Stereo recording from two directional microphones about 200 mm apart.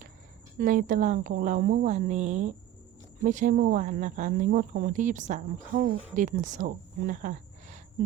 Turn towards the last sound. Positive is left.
turn(degrees=-40)  # may be behind; listen again after turning